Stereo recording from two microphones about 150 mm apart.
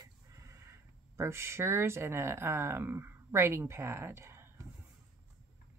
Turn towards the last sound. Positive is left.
turn(degrees=-15)  # may be behind; listen again after turning